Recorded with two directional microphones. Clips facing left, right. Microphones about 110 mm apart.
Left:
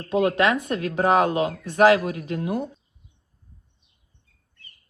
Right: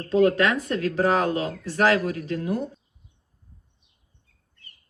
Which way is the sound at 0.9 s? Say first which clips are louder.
Left 4 dB; 20° left (ahead or behind).